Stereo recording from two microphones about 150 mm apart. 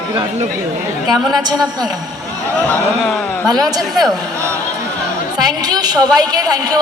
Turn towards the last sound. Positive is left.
turn(degrees=-25)  # may be behind; listen again after turning